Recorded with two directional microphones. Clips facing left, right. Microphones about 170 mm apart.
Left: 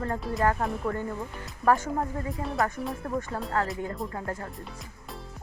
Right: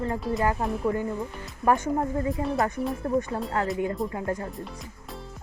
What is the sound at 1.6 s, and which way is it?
Speech, 20° right (ahead or behind).